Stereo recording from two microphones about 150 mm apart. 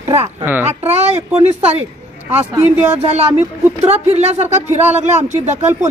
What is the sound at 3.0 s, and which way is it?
Speech, 45° right (ahead or behind).